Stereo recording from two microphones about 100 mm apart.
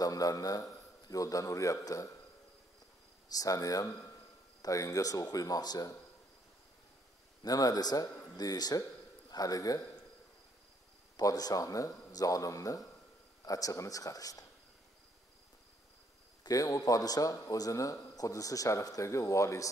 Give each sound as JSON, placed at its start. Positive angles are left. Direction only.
{"t": 0.0, "sound": "speech", "side_deg": 35}
{"t": 3.3, "sound": "speech", "side_deg": 35}
{"t": 7.4, "sound": "speech", "side_deg": 40}
{"t": 11.1, "sound": "speech", "side_deg": 40}
{"t": 16.4, "sound": "speech", "side_deg": 35}